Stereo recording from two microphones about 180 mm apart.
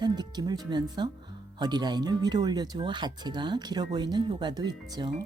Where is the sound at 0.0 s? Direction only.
25° right (ahead or behind).